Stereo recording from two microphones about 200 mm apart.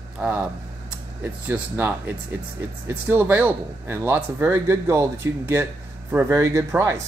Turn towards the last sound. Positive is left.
turn(degrees=-15)  # may be behind; listen again after turning